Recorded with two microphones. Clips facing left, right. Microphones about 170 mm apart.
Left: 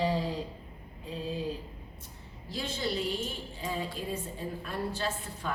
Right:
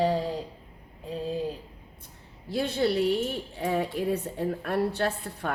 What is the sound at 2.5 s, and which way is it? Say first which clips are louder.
Speech: right 8 dB; 60° right (ahead or behind).